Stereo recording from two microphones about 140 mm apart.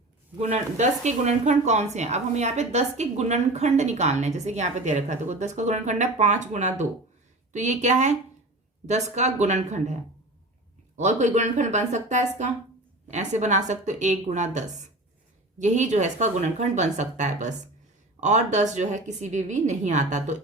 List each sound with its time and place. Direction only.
0.3 s speech: 55° right (ahead or behind)